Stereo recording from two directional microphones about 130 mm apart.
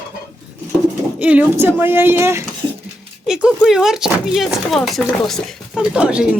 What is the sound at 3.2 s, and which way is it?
Speech, 5° right (ahead or behind).